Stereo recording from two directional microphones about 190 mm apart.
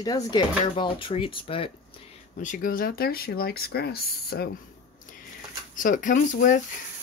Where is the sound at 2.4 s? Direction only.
45° left (ahead or behind).